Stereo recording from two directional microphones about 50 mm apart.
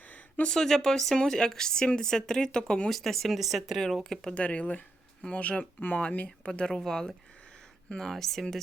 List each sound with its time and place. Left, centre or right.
0.5 s a woman's voice: centre
2.9 s speech: centre
4.4 s a woman's voice: left; by 8.5 s centre